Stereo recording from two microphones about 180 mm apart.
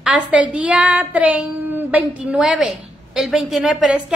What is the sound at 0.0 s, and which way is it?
A woman's voice, 5° right (ahead or behind).